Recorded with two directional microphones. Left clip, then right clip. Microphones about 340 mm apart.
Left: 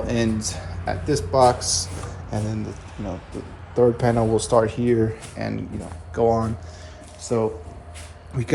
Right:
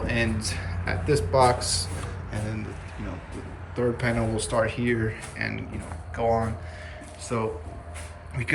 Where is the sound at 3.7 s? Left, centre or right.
Centre.